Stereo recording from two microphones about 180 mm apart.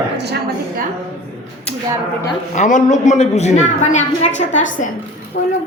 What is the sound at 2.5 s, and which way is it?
Speech, 45° left (ahead or behind).